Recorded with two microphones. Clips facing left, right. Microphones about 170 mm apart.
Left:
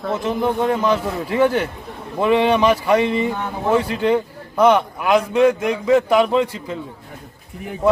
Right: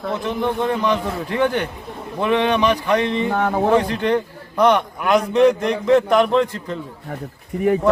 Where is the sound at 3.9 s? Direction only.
5° left (ahead or behind).